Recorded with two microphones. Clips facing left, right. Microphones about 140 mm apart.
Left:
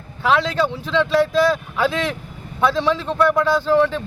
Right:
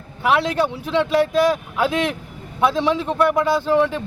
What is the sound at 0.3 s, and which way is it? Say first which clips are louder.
A man's voice: even; 15° right (ahead or behind).